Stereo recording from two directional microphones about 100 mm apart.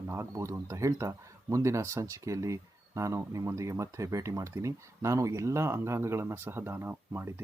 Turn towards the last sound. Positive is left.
turn(degrees=-25)  # may be behind; listen again after turning